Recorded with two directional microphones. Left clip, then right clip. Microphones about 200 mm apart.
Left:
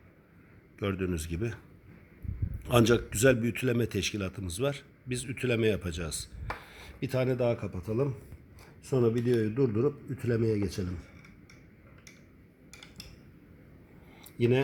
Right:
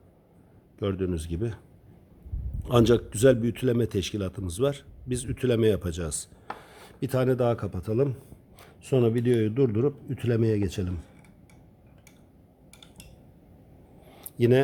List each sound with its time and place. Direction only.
0.8 s speech: 25° right (ahead or behind)
2.6 s speech: 25° right (ahead or behind)
14.1 s a sound: 40° right (ahead or behind)